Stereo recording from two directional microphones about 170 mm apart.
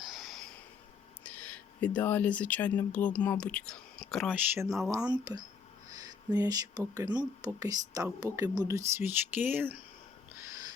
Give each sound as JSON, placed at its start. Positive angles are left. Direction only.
{"t": 0.0, "sound": "snort", "side_deg": 0}
{"t": 1.2, "sound": "speech", "side_deg": 10}
{"t": 4.9, "sound": "speech", "side_deg": -20}